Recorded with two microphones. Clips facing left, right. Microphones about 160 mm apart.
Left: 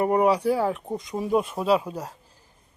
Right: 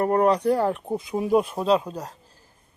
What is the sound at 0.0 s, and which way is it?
Speech, 10° left (ahead or behind).